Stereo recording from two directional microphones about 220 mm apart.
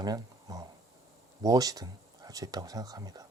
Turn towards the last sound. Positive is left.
turn(degrees=-15)  # may be behind; listen again after turning